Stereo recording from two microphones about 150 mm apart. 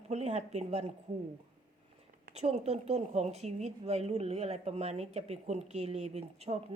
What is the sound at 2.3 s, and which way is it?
A woman's voice, 45° right (ahead or behind).